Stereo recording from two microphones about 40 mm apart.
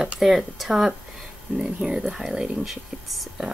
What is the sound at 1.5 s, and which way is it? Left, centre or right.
Speech, right.